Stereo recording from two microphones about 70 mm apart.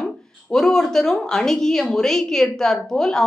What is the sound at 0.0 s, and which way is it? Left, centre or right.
A woman's voice, centre.